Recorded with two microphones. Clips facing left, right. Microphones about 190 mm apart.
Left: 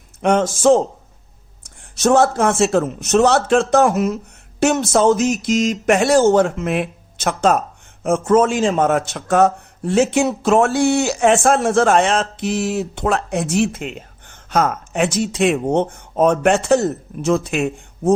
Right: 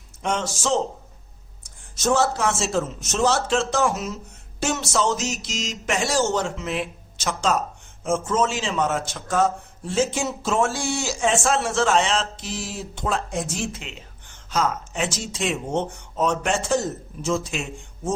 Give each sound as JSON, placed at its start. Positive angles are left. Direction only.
{"t": 0.2, "sound": "speech", "side_deg": 55}
{"t": 2.0, "sound": "a man's voice", "side_deg": 60}